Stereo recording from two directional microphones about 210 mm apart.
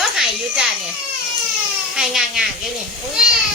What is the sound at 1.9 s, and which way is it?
Speech, centre (ahead or behind).